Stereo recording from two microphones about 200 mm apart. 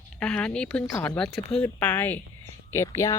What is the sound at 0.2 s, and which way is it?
A woman's voice, 5° left (ahead or behind).